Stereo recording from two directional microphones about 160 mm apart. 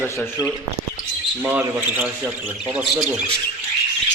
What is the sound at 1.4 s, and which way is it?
Speech, 10° right (ahead or behind).